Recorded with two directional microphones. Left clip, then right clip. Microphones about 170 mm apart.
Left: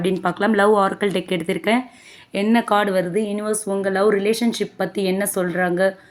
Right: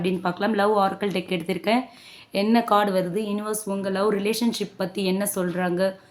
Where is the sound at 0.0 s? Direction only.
20° left (ahead or behind).